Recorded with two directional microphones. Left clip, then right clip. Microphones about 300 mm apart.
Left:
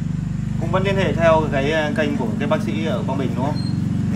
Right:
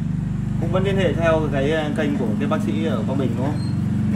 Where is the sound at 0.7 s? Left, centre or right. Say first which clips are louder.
Left 1 dB; left.